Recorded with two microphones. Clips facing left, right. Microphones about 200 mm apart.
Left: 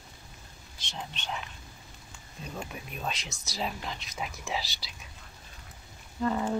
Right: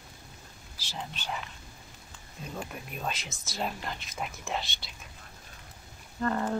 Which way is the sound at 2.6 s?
Centre (ahead or behind).